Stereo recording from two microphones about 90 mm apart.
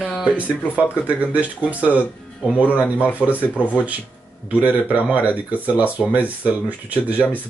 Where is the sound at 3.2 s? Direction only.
10° left (ahead or behind).